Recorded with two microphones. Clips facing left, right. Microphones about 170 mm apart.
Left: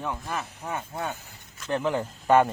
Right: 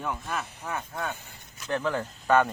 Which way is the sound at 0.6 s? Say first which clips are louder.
Left 2 dB; 25° left (ahead or behind).